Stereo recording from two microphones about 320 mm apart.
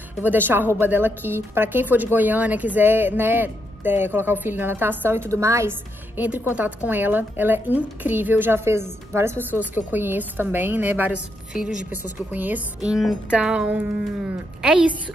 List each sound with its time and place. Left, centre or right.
0.2 s a woman's voice: centre